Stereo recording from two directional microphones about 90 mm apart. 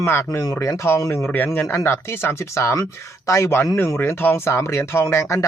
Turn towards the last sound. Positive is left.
turn(degrees=30)  # may be behind; listen again after turning